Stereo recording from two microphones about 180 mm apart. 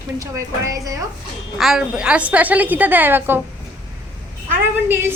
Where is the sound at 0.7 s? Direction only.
20° right (ahead or behind).